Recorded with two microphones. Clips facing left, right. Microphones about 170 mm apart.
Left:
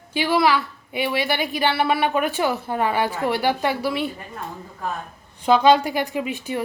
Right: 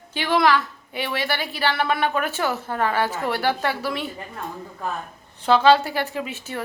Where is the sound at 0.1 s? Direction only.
10° left (ahead or behind).